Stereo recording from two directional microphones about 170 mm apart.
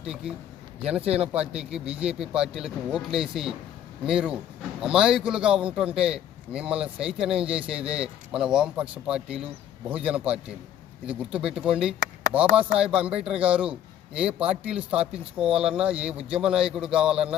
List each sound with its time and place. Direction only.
0.0 s a man's voice: 5° right (ahead or behind)
1.0 s speech: 35° right (ahead or behind)
1.3 s a man's voice: 5° right (ahead or behind)